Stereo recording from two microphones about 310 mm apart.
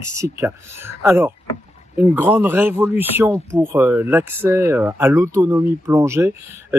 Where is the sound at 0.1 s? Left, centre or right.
Centre.